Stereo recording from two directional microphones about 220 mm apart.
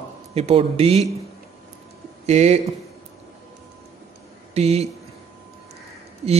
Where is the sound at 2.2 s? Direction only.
30° right (ahead or behind).